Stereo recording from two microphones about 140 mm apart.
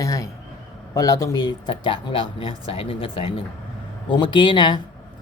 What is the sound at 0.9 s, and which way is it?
Speech, 25° left (ahead or behind).